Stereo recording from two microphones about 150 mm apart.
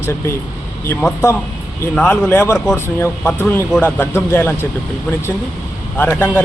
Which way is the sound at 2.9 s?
15° left (ahead or behind).